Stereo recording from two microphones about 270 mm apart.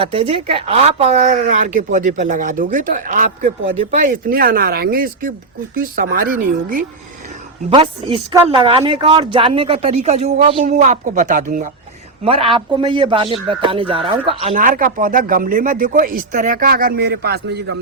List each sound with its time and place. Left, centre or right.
0.0 s speech: centre
7.7 s speech: centre
14.3 s speech: right